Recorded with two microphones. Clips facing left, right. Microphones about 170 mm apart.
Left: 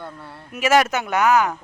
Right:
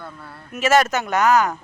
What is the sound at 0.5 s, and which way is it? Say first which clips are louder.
Speech: even; 10° left (ahead or behind).